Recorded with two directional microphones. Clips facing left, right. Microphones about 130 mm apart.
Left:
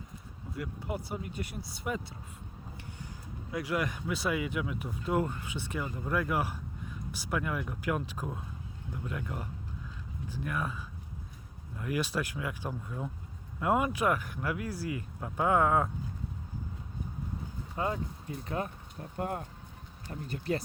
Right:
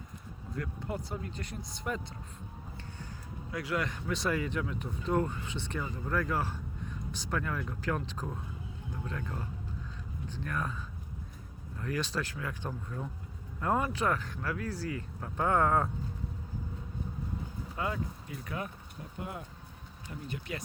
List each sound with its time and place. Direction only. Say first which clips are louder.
0.5 s speech: even; 10° left (ahead or behind)
3.5 s speech: left 2 dB; 15° left (ahead or behind)
11.8 s speech: left 2 dB; 10° left (ahead or behind)
17.7 s speech: left 2 dB; 30° left (ahead or behind)
19.1 s speech: left 7 dB; 50° left (ahead or behind)